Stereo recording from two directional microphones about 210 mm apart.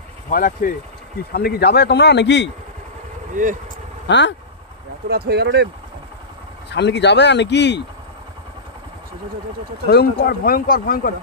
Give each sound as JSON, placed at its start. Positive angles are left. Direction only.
{"t": 0.3, "sound": "a man's voice", "side_deg": 40}
{"t": 3.4, "sound": "speech", "side_deg": -40}
{"t": 5.1, "sound": "speech", "side_deg": -50}
{"t": 6.7, "sound": "speech", "side_deg": 55}
{"t": 9.8, "sound": "a man's voice", "side_deg": 50}